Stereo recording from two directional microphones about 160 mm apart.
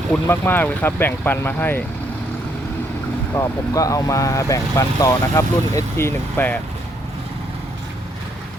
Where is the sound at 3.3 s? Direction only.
15° left (ahead or behind).